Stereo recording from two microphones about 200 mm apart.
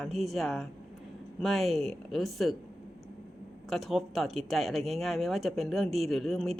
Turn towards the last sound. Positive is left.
turn(degrees=0)  # may be behind; listen again after turning